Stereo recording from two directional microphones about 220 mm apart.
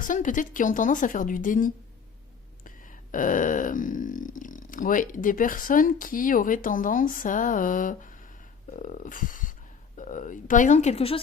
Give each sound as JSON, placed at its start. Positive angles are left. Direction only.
{"t": 0.0, "sound": "a woman's voice", "side_deg": 35}
{"t": 2.6, "sound": "a sound", "side_deg": 40}
{"t": 8.7, "sound": "speech", "side_deg": 35}